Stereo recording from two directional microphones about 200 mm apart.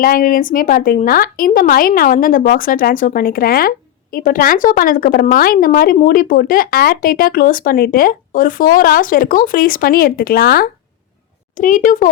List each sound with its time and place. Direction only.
0.0 s a woman's voice: 45° left (ahead or behind)